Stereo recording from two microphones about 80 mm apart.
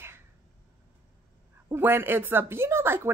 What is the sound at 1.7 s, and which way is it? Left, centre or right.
A woman's voice, right.